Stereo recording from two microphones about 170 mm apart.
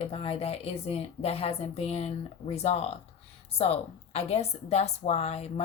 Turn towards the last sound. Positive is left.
turn(degrees=40)  # may be behind; listen again after turning